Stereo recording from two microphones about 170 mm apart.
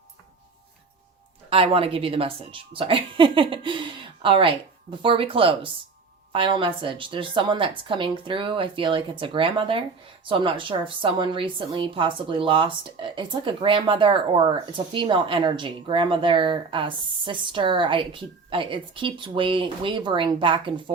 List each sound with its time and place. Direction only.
1.5 s a woman's voice: 35° right (ahead or behind)